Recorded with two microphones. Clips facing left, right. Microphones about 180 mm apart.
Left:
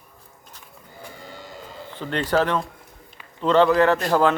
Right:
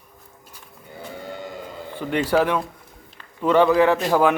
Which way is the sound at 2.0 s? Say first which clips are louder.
Right 2 dB; 10° right (ahead or behind).